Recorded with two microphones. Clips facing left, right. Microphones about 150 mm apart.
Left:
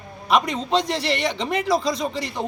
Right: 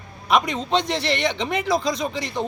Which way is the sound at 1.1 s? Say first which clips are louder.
Even; 35° left (ahead or behind).